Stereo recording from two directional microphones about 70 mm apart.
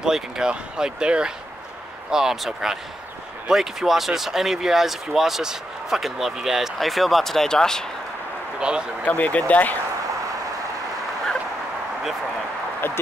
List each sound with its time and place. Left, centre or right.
0.0 s speech: centre
8.5 s speech: centre
9.0 s speech: left
12.8 s speech: left